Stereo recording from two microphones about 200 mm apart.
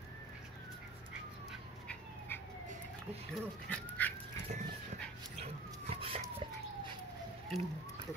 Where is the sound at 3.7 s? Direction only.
10° left (ahead or behind).